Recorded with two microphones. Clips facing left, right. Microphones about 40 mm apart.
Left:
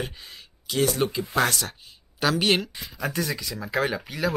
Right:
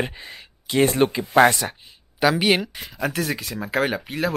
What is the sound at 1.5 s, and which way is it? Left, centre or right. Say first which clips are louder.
Speech: right 5 dB; centre.